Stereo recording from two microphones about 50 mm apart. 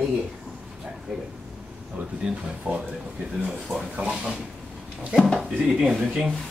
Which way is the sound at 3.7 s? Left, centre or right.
Centre.